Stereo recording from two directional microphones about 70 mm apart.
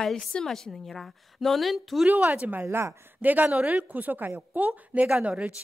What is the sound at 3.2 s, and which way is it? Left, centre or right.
A woman's voice, right.